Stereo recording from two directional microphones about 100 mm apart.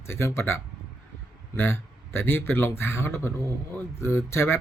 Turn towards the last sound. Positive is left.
turn(degrees=25)  # may be behind; listen again after turning